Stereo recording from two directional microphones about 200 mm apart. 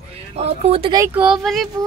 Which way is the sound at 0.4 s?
30° right (ahead or behind).